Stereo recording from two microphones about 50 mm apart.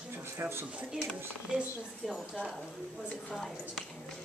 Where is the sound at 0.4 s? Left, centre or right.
Right.